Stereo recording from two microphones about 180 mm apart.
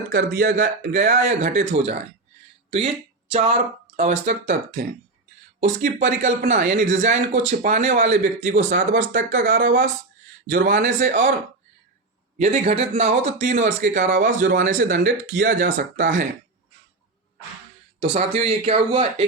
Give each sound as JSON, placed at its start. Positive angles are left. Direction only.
{"t": 0.2, "sound": "speech", "side_deg": -75}
{"t": 3.3, "sound": "speech", "side_deg": -35}
{"t": 12.4, "sound": "speech", "side_deg": -40}
{"t": 14.7, "sound": "speech", "side_deg": -50}
{"t": 18.1, "sound": "speech", "side_deg": -40}